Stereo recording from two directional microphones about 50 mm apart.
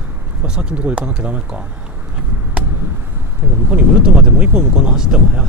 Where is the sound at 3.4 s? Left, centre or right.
Right.